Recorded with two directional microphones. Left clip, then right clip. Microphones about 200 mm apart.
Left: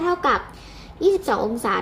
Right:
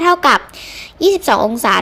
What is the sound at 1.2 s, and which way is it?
Speech, 60° right (ahead or behind).